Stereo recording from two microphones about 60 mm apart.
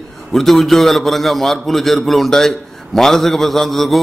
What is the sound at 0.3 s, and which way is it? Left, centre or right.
A man's voice, centre.